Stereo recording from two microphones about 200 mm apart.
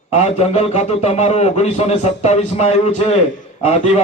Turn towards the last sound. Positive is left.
turn(degrees=35)  # may be behind; listen again after turning